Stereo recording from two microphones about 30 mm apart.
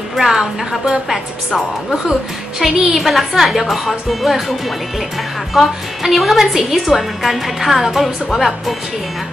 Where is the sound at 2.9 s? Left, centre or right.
Centre.